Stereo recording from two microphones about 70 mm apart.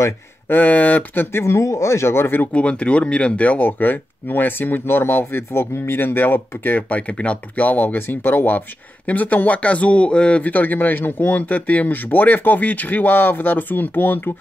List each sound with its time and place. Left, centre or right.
0.5 s speech: left
2.5 s speech: centre